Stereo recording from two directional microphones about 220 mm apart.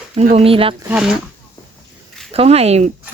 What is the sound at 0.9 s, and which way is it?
Speech, 5° right (ahead or behind).